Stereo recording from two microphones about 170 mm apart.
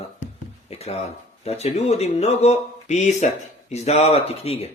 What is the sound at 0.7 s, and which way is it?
Speech, 35° left (ahead or behind).